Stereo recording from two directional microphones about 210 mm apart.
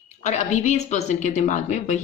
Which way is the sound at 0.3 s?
35° left (ahead or behind).